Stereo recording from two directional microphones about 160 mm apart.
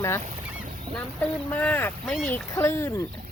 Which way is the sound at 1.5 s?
10° left (ahead or behind).